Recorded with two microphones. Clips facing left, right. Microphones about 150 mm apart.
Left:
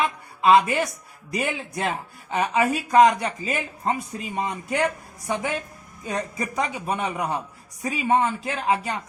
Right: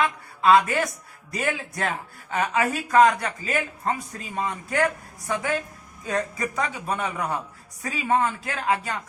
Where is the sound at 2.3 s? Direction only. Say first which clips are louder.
Left 2 dB; 15° left (ahead or behind).